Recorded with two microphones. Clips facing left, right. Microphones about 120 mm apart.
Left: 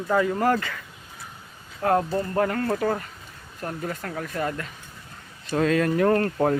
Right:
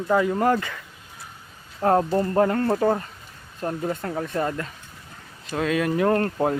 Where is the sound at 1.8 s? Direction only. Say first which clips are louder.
Right 3 dB; 25° right (ahead or behind).